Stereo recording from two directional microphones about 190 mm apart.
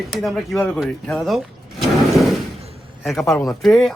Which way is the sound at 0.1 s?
Centre (ahead or behind).